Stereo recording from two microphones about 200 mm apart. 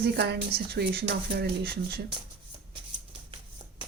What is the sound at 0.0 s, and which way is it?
Speech, 55° right (ahead or behind).